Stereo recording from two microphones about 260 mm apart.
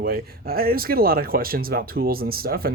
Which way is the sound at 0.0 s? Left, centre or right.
Right.